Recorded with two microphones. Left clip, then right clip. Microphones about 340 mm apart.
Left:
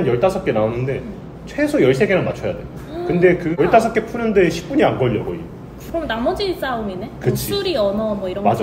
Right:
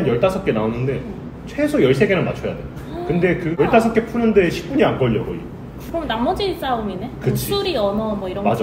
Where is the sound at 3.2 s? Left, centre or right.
Left.